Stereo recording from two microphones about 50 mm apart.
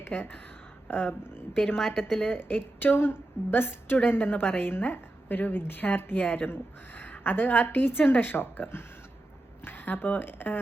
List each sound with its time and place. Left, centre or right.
0.1 s a woman's voice: left
1.8 s a woman's voice: centre
2.3 s a woman's voice: left
6.1 s a woman's voice: left
6.5 s a woman's voice: left